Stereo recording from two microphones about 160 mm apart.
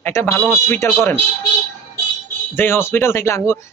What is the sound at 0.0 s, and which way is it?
Speech, 15° left (ahead or behind).